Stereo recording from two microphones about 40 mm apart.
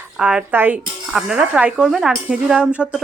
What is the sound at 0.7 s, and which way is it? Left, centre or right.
Speech, centre.